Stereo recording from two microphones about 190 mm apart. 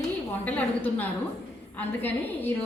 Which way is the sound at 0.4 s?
10° left (ahead or behind).